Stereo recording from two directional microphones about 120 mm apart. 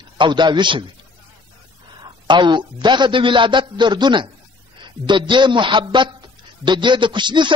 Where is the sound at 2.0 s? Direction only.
40° right (ahead or behind).